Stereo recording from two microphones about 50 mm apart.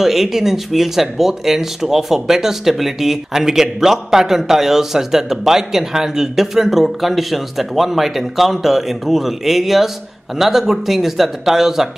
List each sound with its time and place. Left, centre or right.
0.0 s speech: centre